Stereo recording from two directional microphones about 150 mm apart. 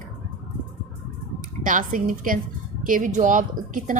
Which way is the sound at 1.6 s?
60° right (ahead or behind).